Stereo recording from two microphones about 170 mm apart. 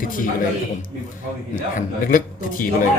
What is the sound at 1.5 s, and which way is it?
A man's voice, 50° left (ahead or behind).